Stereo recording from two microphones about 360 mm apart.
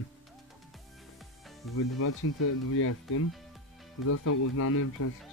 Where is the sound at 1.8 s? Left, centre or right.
Left.